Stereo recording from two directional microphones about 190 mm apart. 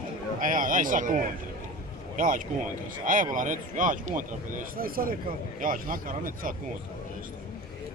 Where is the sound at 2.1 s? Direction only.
45° right (ahead or behind).